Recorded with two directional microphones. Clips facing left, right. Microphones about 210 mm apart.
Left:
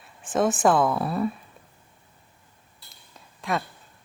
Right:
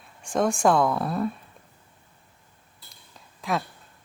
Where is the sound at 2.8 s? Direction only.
Centre (ahead or behind).